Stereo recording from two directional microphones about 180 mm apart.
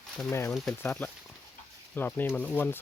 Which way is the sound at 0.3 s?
15° left (ahead or behind).